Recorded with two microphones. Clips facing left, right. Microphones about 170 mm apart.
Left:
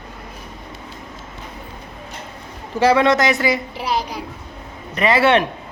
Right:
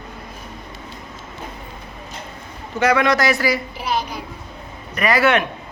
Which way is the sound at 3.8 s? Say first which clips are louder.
Left 1 dB; 35° left (ahead or behind).